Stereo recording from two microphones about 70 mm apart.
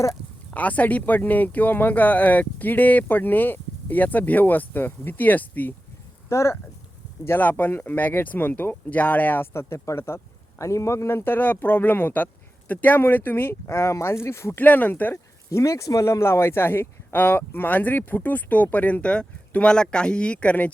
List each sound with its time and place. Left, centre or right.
0.5 s speech: left
6.2 s speech: left
7.3 s speech: left
14.6 s speech: left
15.4 s speech: left
16.2 s speech: left; by 20.7 s centre